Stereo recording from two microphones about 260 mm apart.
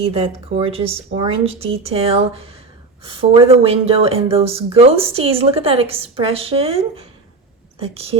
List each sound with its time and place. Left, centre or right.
0.0 s speech: right